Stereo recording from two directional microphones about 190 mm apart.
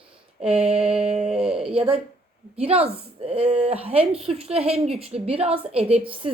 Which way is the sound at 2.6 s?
30° right (ahead or behind).